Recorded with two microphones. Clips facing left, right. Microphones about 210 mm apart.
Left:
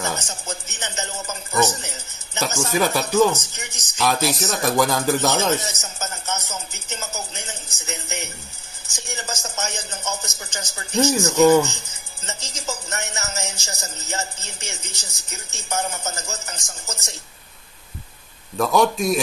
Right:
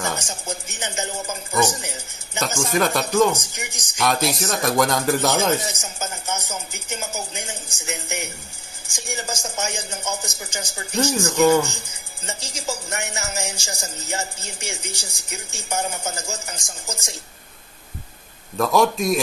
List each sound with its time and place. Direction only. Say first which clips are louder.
0.0 s music: even; 10° right (ahead or behind)
2.7 s a man's voice: even; 5° left (ahead or behind)
3.3 s music: even; 15° right (ahead or behind)
4.0 s a man's voice: even; centre (ahead or behind)
5.3 s music: right 1 dB; 15° right (ahead or behind)
18.6 s a man's voice: even; centre (ahead or behind)